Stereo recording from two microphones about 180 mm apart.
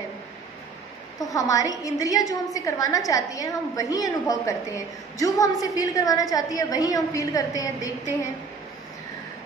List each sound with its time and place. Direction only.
1.3 s a woman's voice: 20° left (ahead or behind)